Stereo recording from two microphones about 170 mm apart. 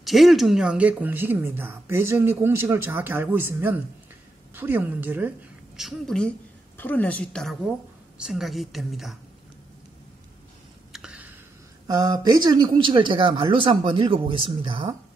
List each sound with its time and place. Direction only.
0.0 s speech: centre (ahead or behind)
5.8 s a woman's voice: centre (ahead or behind)
10.9 s a sound: 5° right (ahead or behind)
11.9 s speech: 25° right (ahead or behind)